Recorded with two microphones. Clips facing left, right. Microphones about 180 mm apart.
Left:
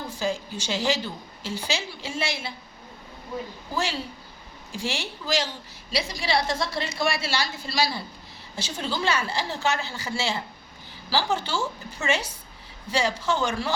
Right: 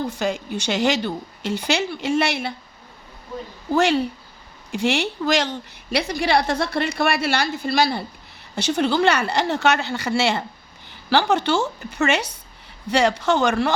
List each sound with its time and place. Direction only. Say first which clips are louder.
0.1 s a woman's voice: right 4 dB; 70° right (ahead or behind)
3.8 s a woman's voice: right 10 dB; 70° right (ahead or behind)
8.5 s a woman's voice: right 10 dB; 70° right (ahead or behind)